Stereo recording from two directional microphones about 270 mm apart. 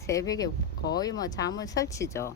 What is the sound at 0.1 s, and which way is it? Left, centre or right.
A woman's voice, centre.